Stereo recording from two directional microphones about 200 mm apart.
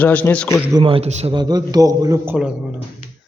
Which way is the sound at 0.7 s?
25° right (ahead or behind).